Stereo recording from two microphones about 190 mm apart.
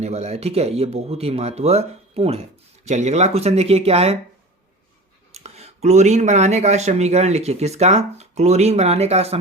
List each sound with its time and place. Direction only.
0.0 s speech: 35° right (ahead or behind)
5.3 s speech: 35° right (ahead or behind)